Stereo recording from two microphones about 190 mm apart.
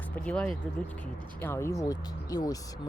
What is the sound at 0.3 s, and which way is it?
Speech, 5° left (ahead or behind).